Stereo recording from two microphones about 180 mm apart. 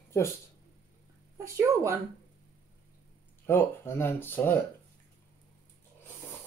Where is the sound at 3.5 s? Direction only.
10° left (ahead or behind).